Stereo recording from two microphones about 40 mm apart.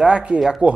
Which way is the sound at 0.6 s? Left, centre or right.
Right.